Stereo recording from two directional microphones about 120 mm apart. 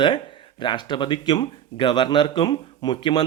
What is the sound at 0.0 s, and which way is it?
Speech, 45° left (ahead or behind).